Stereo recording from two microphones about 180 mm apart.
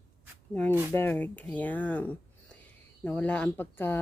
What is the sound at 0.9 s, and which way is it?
Speech, 10° left (ahead or behind).